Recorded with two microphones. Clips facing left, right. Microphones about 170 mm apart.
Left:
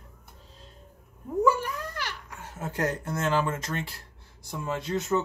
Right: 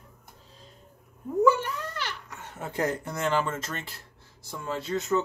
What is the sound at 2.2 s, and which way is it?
Baby laughter, 10° left (ahead or behind).